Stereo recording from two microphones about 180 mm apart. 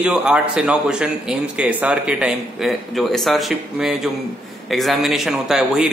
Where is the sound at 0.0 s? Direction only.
5° right (ahead or behind).